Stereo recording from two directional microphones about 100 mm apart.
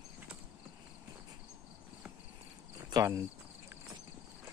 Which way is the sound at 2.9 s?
35° right (ahead or behind).